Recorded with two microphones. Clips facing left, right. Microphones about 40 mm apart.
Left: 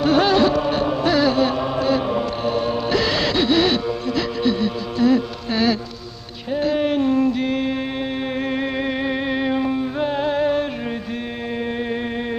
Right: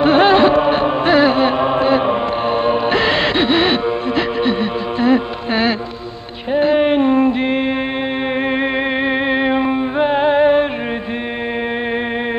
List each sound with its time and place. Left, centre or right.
0.0 s music: right